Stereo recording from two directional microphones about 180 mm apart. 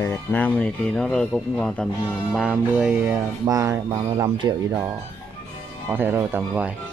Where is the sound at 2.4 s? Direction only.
5° right (ahead or behind).